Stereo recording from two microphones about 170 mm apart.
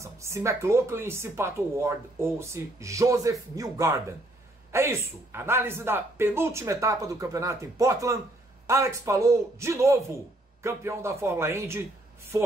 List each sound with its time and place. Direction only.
0.0 s speech: 15° right (ahead or behind)